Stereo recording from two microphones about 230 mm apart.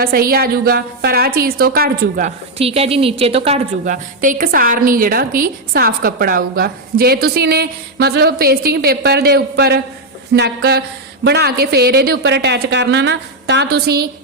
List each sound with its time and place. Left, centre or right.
0.0 s a woman's voice: right